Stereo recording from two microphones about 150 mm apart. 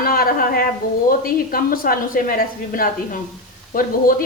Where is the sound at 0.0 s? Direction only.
75° left (ahead or behind).